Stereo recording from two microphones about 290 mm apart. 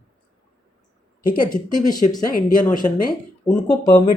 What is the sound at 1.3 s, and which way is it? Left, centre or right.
Speech, left.